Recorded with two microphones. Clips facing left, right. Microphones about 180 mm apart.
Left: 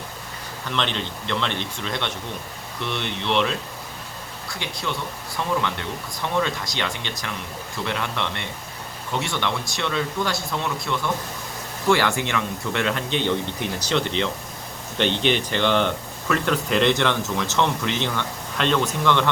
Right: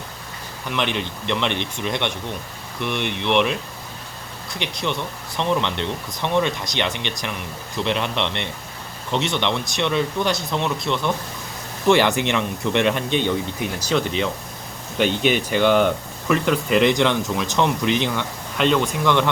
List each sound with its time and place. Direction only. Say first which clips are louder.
0.7 s speech: right 2 dB; 15° right (ahead or behind)
4.6 s speech: right 4 dB; 20° right (ahead or behind)